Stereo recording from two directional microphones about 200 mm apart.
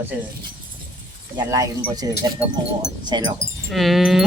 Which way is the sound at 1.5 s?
15° right (ahead or behind).